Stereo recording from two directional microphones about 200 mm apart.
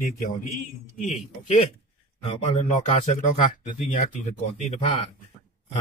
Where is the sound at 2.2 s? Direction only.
35° left (ahead or behind).